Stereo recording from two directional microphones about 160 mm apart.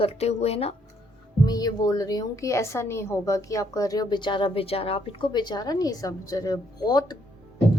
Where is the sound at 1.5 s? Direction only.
25° left (ahead or behind).